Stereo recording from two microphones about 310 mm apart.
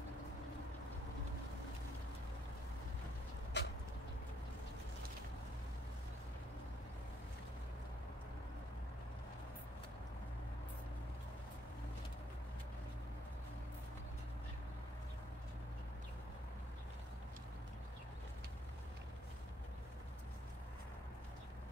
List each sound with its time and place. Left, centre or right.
3.6 s vehicle: left